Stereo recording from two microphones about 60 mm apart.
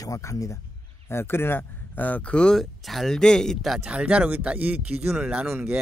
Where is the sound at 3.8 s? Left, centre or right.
Centre.